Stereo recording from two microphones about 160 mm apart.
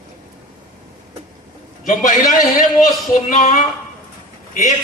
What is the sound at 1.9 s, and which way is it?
A man's voice, 55° left (ahead or behind).